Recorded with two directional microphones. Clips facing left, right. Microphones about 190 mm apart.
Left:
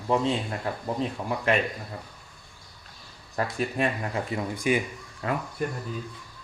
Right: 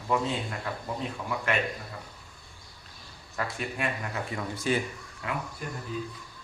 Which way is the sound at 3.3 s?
35° left (ahead or behind).